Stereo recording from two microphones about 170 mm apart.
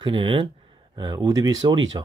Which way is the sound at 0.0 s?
30° right (ahead or behind).